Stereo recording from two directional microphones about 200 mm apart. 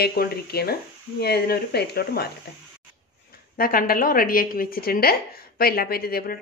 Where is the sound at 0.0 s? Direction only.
50° left (ahead or behind).